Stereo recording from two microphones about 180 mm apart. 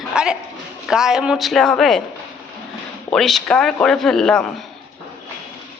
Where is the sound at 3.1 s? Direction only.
Centre (ahead or behind).